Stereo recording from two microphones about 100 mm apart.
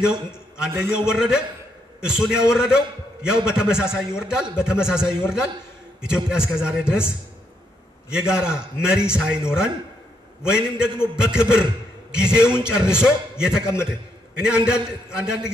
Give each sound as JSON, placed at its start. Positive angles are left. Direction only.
{"t": 0.6, "sound": "a man's voice", "side_deg": -10}
{"t": 8.1, "sound": "a man's voice", "side_deg": -10}